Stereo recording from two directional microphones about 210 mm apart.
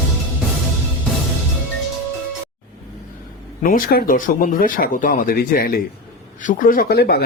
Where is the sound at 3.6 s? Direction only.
40° left (ahead or behind).